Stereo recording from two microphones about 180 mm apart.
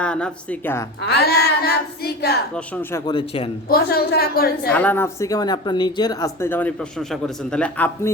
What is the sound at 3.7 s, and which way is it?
A woman's voice, 60° left (ahead or behind).